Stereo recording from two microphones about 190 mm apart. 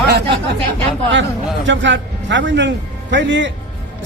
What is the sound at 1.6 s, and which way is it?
A man's voice, 75° right (ahead or behind).